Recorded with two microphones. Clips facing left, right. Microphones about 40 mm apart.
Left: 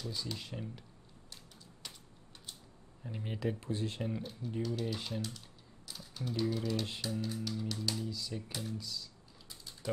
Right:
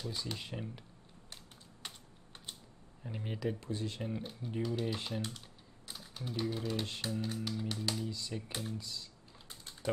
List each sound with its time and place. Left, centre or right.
0.1 s speech: centre
3.0 s speech: centre
3.4 s speech: centre
3.7 s speech: left
4.2 s speech: right
5.9 s typing: right
6.5 s speech: right
7.0 s music: right
8.1 s speech: centre
8.5 s music: right
8.7 s speech: right